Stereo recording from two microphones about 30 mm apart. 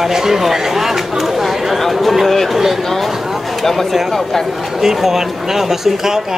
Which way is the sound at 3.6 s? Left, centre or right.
Centre.